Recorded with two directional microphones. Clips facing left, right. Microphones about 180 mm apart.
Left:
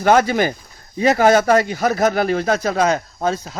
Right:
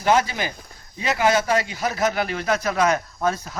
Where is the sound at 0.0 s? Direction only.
55° left (ahead or behind).